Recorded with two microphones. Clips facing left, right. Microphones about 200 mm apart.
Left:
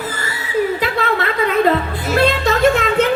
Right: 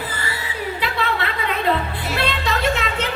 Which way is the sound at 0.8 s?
45° left (ahead or behind).